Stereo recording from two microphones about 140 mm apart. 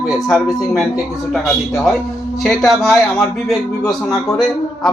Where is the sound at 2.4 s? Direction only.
Centre (ahead or behind).